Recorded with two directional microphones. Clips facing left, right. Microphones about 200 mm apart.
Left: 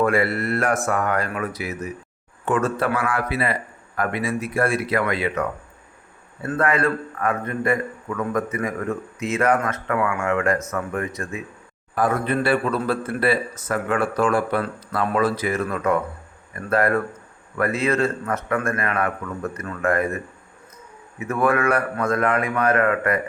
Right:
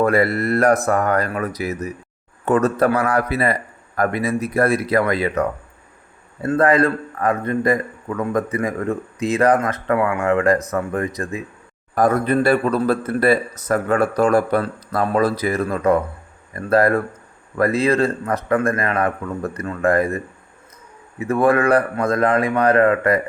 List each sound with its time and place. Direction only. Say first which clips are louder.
0.0 s a man's voice: right 3 dB; 40° right (ahead or behind)